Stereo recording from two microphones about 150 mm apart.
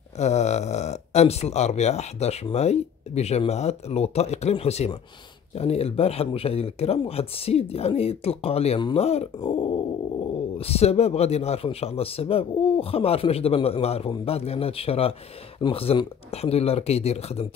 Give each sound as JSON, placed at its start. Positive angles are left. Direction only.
{"t": 0.2, "sound": "a man's voice", "side_deg": 50}